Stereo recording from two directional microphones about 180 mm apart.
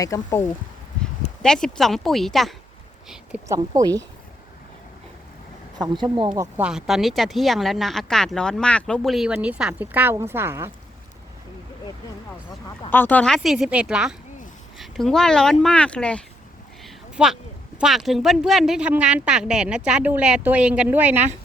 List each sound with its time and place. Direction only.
0.0 s speech: 20° left (ahead or behind)
1.4 s speech: 5° left (ahead or behind)
3.5 s speech: 20° right (ahead or behind)
5.8 s speech: 25° right (ahead or behind)
6.6 s speech: 5° right (ahead or behind)
12.9 s speech: 10° left (ahead or behind)
16.8 s a sound: 5° right (ahead or behind)
17.7 s speech: centre (ahead or behind)